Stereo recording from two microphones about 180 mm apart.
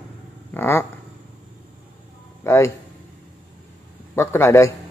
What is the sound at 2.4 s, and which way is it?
Speech, 15° left (ahead or behind).